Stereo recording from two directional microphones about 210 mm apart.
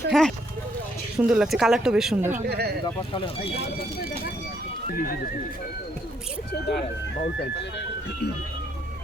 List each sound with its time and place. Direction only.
0.1 s speech: centre (ahead or behind)
2.3 s speech: 50° right (ahead or behind)
2.8 s speech: 25° left (ahead or behind)
6.5 s speech: 50° left (ahead or behind)